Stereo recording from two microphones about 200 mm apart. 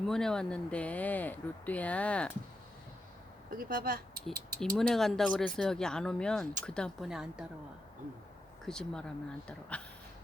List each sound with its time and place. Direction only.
0.1 s speech: 5° left (ahead or behind)
3.5 s speech: 45° right (ahead or behind)
4.8 s speech: centre (ahead or behind)
8.6 s speech: 5° left (ahead or behind)